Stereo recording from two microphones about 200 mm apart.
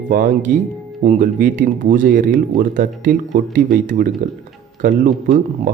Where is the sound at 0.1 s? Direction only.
40° right (ahead or behind).